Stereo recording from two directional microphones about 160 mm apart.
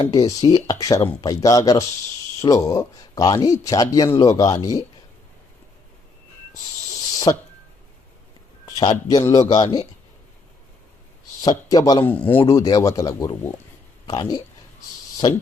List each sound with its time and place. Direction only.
0.1 s speech: 25° left (ahead or behind)
7.3 s speech: 25° left (ahead or behind)
8.6 s speech: 25° left (ahead or behind)
11.4 s speech: 25° left (ahead or behind)
12.0 s speech: 10° left (ahead or behind)
12.5 s speech: 20° left (ahead or behind)